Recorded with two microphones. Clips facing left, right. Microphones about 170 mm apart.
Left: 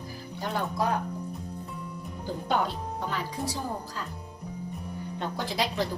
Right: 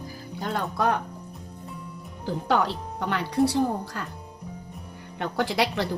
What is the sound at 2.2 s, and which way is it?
A woman's voice, 85° right.